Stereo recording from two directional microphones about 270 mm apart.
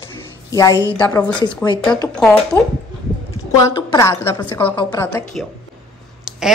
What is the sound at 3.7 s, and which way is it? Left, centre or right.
A woman's voice, centre.